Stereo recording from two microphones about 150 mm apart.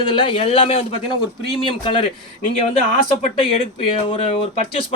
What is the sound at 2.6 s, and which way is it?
Speech, 40° left (ahead or behind).